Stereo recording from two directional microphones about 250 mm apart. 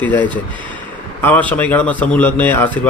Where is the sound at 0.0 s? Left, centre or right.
Centre.